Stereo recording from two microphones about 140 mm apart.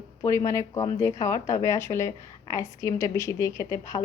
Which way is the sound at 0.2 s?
20° left (ahead or behind).